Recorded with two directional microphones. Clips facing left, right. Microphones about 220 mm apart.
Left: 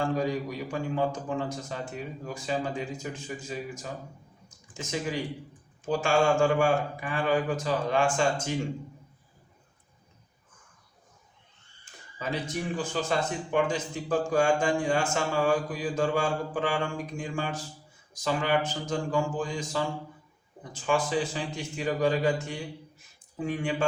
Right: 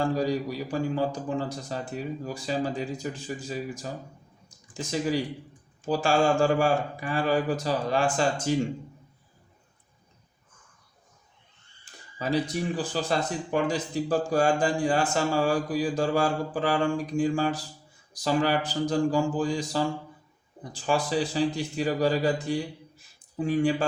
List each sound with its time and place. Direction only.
0.0 s speech: 35° right (ahead or behind)
4.4 s a sound: 35° right (ahead or behind)
5.8 s speech: 35° right (ahead or behind)
12.2 s speech: 35° right (ahead or behind)